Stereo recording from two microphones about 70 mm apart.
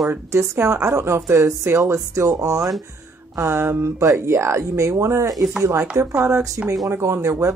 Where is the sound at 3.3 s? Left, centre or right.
Right.